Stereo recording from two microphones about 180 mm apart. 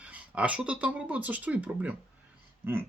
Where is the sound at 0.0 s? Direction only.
5° right (ahead or behind).